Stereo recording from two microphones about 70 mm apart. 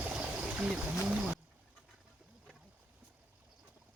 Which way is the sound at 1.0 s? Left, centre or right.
Centre.